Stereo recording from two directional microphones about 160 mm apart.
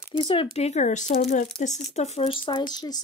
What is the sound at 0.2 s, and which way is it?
Speech, 35° left (ahead or behind).